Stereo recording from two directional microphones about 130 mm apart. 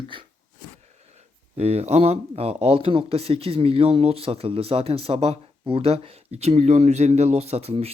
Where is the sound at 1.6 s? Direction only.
55° right (ahead or behind).